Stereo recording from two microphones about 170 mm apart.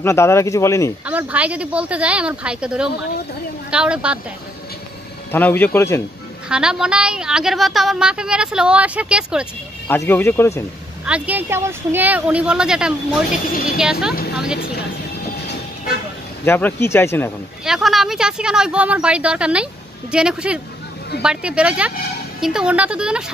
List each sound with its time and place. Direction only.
0.0 s a man's voice: 15° left (ahead or behind)
1.0 s a woman's voice: 10° right (ahead or behind)
5.3 s a man's voice: 10° left (ahead or behind)
6.5 s a woman's voice: 5° right (ahead or behind)
9.8 s a man's voice: 10° left (ahead or behind)
11.1 s a woman's voice: 10° right (ahead or behind)
16.4 s a man's voice: 10° left (ahead or behind)
17.6 s a woman's voice: centre (ahead or behind)